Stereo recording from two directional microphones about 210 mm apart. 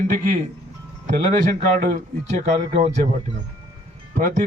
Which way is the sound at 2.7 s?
35° right (ahead or behind).